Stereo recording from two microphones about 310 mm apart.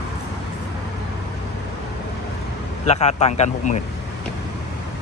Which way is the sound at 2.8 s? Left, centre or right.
Left.